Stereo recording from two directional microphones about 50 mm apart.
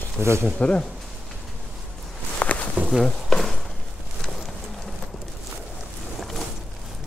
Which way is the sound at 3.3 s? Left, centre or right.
Centre.